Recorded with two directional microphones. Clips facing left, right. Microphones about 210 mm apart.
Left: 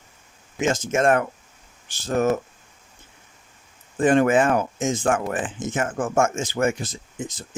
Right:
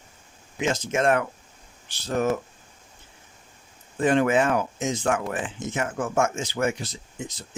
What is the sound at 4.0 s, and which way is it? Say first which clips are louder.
Speech: left 3 dB; 50° left (ahead or behind).